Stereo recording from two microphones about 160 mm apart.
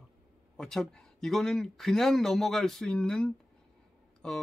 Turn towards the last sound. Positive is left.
turn(degrees=5)  # may be behind; listen again after turning